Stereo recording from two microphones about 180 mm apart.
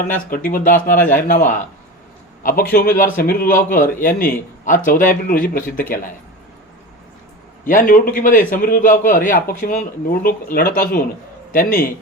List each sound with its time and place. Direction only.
0.3 s a man's voice: 50° left (ahead or behind)
0.9 s a man's voice: 10° left (ahead or behind)
1.3 s a man's voice: 45° left (ahead or behind)
7.6 s a man's voice: 50° left (ahead or behind)